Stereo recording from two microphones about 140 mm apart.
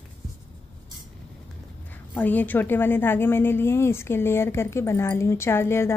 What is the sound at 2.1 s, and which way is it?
Speech, 10° left (ahead or behind).